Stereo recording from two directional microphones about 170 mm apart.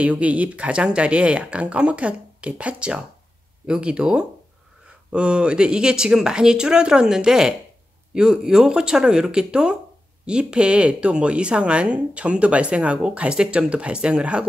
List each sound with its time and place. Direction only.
0.0 s speech: 10° right (ahead or behind)